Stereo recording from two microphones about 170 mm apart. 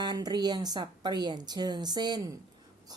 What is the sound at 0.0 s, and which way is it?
A woman's voice, 25° right (ahead or behind).